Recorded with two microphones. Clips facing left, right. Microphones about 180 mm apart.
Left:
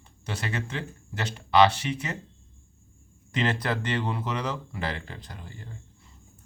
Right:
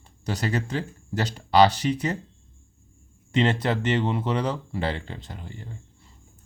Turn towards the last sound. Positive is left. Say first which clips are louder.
# right 4 dB
turn(degrees=-20)  # may be behind; listen again after turning